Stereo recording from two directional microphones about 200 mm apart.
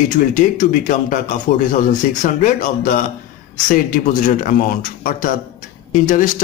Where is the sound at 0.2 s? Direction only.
40° left (ahead or behind).